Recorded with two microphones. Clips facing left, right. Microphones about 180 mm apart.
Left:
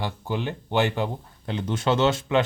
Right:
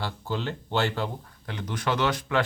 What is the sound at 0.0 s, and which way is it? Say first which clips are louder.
Speech: left 2 dB; 15° left (ahead or behind).